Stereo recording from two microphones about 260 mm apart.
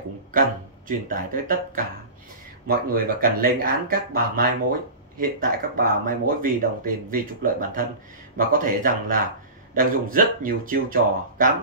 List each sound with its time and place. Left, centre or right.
0.3 s speech: right